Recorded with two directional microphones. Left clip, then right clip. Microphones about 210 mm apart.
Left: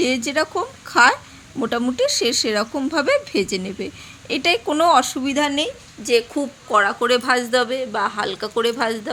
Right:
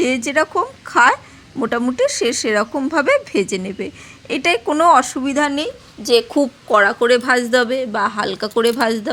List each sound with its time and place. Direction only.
0.3 s speech: 10° right (ahead or behind)
6.1 s speech: 25° right (ahead or behind)